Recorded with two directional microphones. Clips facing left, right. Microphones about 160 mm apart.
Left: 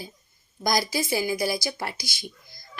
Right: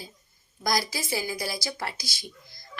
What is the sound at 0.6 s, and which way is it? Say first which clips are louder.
Speech: left 3 dB; 20° left (ahead or behind).